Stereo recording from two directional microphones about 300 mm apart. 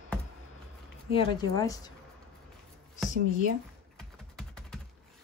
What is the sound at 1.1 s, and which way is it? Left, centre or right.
Speech, centre.